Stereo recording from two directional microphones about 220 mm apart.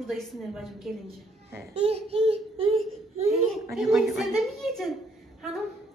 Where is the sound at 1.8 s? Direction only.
30° right (ahead or behind).